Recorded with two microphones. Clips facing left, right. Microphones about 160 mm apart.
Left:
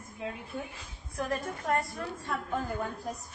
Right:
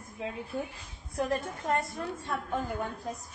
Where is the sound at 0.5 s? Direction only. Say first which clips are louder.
Right 3 dB; centre (ahead or behind).